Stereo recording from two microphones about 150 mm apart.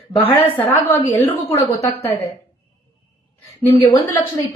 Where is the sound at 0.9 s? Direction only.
20° left (ahead or behind).